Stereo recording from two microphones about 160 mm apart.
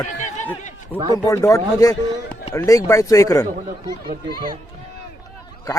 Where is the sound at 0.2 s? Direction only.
50° left (ahead or behind).